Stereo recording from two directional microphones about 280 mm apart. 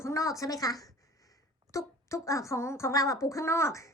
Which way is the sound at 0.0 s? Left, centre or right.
Centre.